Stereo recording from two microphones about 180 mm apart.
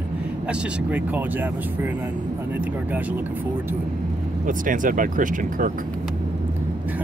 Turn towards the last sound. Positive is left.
turn(degrees=-50)  # may be behind; listen again after turning